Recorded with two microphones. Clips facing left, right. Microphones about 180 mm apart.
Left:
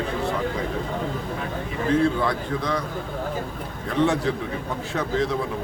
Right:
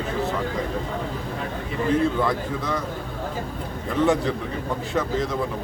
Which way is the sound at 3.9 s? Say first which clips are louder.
Right 1 dB; centre (ahead or behind).